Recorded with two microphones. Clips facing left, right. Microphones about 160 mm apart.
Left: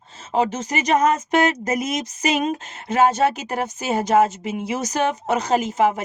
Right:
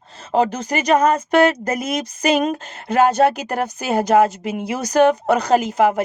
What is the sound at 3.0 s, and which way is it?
A woman's voice, 60° right (ahead or behind).